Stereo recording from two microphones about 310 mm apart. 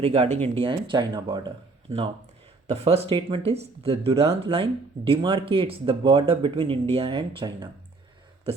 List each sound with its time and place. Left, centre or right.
0.0 s speech: centre